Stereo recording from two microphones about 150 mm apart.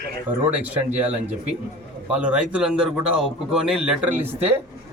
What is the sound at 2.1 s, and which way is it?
A man's voice, 10° right (ahead or behind).